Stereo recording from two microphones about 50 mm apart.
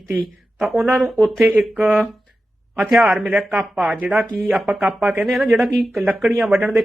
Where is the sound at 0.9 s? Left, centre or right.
Centre.